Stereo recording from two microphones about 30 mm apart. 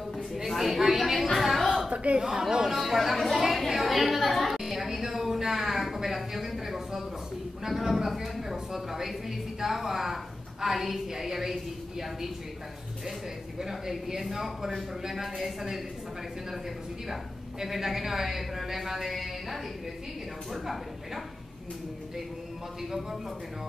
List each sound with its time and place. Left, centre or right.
0.5 s a sound: centre
1.1 s music: centre
1.4 s a sound: centre
2.1 s speech: right
2.6 s a woman's voice: centre
4.6 s music: centre
6.1 s a sound: centre
7.6 s a woman's voice: centre
13.6 s a woman's voice: centre
17.1 s a woman's voice: centre